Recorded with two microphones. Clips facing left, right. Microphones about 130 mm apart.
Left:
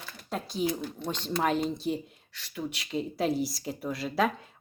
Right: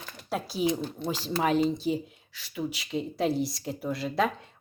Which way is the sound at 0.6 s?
25° right (ahead or behind).